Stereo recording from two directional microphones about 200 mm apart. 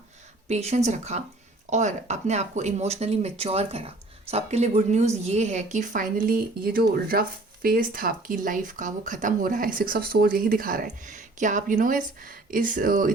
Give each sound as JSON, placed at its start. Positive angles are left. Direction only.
{"t": 0.4, "sound": "speech", "side_deg": -35}